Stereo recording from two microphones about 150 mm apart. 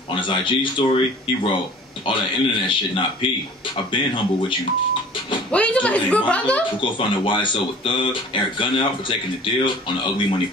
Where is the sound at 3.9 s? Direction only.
35° left (ahead or behind).